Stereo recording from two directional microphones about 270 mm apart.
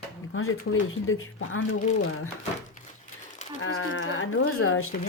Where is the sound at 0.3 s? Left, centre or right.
Left.